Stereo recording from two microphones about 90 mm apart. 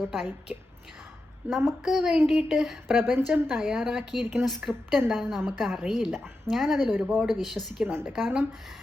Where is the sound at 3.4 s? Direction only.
5° right (ahead or behind).